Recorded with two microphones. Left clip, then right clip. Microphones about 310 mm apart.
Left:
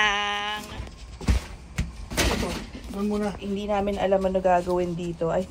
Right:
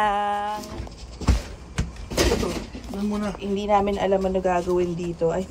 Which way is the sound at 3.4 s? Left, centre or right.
Centre.